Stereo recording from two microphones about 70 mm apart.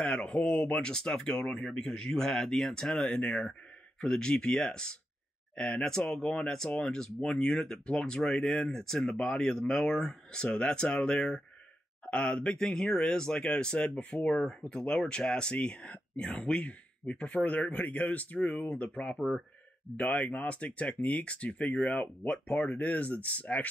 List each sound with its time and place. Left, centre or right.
0.0 s speech: centre